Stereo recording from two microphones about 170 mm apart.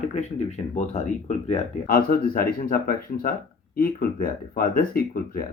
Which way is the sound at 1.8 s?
60° left (ahead or behind).